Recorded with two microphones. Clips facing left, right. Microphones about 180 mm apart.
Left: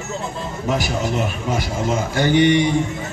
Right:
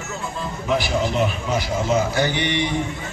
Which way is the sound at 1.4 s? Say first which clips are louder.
Even; 50° left (ahead or behind).